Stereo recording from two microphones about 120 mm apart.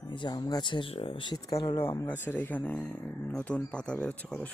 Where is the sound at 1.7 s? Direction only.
25° left (ahead or behind).